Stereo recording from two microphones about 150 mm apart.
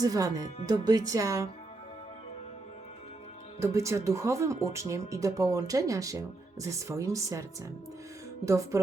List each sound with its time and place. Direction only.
0.0 s speech: 25° right (ahead or behind)
3.6 s speech: 20° right (ahead or behind)
8.4 s speech: 20° right (ahead or behind)